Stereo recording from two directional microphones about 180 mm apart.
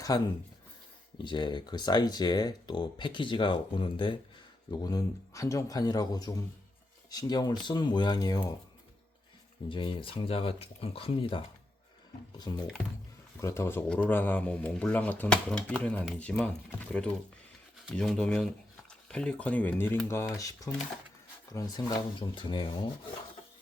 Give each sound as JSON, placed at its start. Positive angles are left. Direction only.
{"t": 0.1, "sound": "speech", "side_deg": 20}
{"t": 9.6, "sound": "speech", "side_deg": 30}
{"t": 12.5, "sound": "speech", "side_deg": 25}